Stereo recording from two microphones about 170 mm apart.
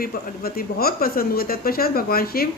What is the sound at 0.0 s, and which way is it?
Speech, 65° left (ahead or behind).